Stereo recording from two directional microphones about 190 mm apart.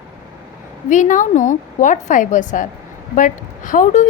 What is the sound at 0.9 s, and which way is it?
A woman's voice, 40° left (ahead or behind).